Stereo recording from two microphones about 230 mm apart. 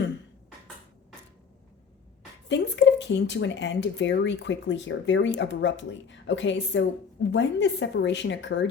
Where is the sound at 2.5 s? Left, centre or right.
Left.